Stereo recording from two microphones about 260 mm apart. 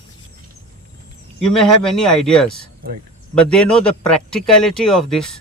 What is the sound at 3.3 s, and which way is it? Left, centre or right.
A man's voice, centre.